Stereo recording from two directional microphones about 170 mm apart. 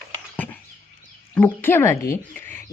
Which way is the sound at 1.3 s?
10° left (ahead or behind).